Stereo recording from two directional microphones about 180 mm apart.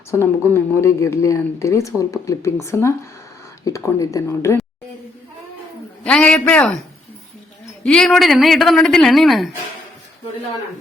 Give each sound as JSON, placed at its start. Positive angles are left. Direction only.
{"t": 0.1, "sound": "speech", "side_deg": 15}
{"t": 6.0, "sound": "speech", "side_deg": 5}
{"t": 7.9, "sound": "a woman's voice", "side_deg": 5}